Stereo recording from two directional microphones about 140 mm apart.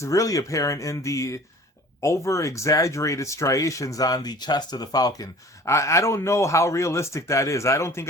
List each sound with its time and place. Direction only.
0.0 s speech: 25° left (ahead or behind)